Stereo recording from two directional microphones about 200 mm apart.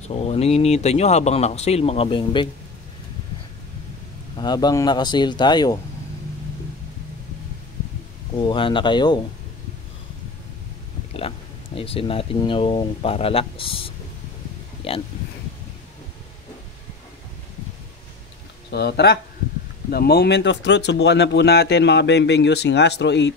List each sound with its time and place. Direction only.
0.1 s speech: 30° left (ahead or behind)
4.4 s speech: 20° left (ahead or behind)
8.4 s speech: 25° left (ahead or behind)
11.1 s speech: 25° left (ahead or behind)
18.7 s speech: 55° left (ahead or behind)